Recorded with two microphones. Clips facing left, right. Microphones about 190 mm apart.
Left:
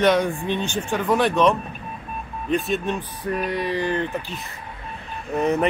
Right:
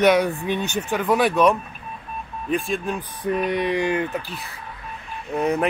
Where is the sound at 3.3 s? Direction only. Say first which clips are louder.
Right 2 dB; 20° right (ahead or behind).